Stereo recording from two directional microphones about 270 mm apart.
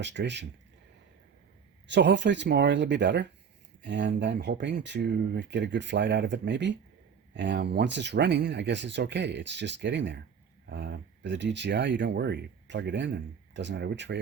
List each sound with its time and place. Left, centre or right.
0.0 s speech: right
1.9 s speech: right